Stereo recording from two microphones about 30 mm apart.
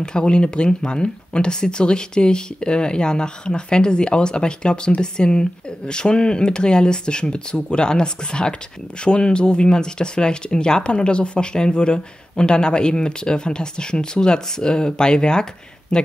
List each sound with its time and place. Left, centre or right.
0.0 s speech: left